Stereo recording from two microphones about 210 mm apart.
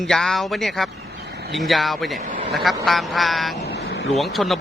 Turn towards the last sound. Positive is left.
turn(degrees=0)  # may be behind; listen again after turning